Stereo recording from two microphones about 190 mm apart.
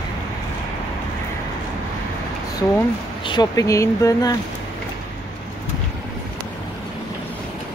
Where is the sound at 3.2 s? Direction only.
20° left (ahead or behind).